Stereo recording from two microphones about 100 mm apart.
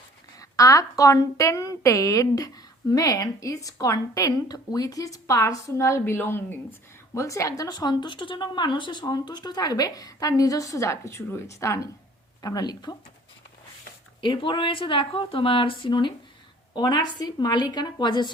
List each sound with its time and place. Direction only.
0.3 s a woman's voice: 35° left (ahead or behind)
14.2 s speech: 55° left (ahead or behind)